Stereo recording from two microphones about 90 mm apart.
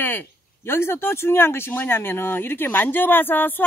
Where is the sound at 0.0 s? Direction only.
25° left (ahead or behind).